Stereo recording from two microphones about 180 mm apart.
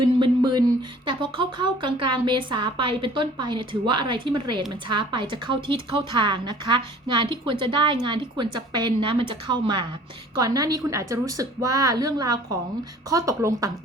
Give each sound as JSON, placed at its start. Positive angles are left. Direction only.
{"t": 0.0, "sound": "speech", "side_deg": -25}